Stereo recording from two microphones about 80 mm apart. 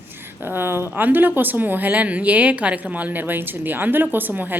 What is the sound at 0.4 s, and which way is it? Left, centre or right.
Speech, right.